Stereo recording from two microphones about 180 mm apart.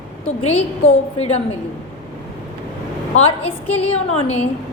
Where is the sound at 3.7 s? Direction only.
35° left (ahead or behind).